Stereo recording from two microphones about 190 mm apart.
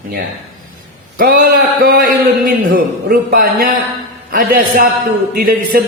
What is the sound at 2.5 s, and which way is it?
A man's voice, 50° right (ahead or behind).